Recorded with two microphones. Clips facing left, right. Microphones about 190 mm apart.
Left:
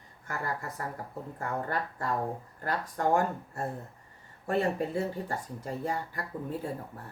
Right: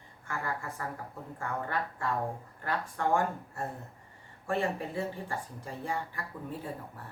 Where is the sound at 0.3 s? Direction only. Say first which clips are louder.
Left 1 dB; 40° left (ahead or behind).